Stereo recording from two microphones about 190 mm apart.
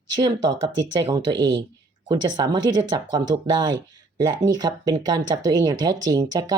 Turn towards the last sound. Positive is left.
turn(degrees=-20)  # may be behind; listen again after turning